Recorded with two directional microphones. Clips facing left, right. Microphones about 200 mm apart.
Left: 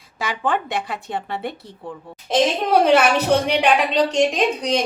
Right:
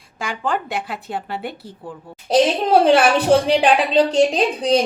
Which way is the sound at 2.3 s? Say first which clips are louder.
Right 3 dB; 30° right (ahead or behind).